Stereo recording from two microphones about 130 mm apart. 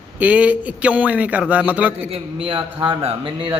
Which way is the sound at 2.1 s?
45° right (ahead or behind).